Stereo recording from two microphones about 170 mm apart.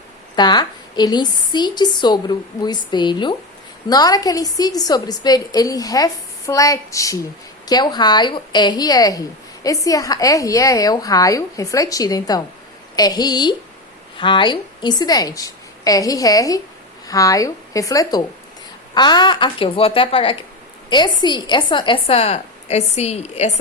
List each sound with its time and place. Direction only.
0.3 s a woman's voice: 25° left (ahead or behind)